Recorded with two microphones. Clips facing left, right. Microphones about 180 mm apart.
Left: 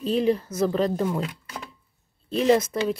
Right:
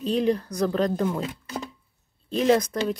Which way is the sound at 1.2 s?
20° right (ahead or behind).